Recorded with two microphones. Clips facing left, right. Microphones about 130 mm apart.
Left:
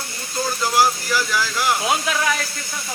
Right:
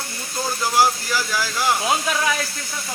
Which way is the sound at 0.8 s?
10° right (ahead or behind).